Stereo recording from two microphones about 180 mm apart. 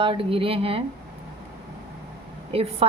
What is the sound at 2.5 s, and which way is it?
Speech, 35° right (ahead or behind).